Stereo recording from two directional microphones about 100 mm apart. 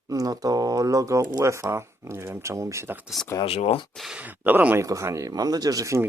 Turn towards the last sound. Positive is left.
turn(degrees=-30)  # may be behind; listen again after turning